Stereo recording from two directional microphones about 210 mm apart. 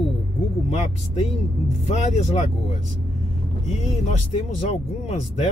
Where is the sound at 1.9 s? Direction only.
30° left (ahead or behind).